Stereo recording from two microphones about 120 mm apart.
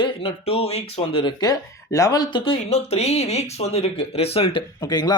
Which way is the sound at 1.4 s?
30° left (ahead or behind).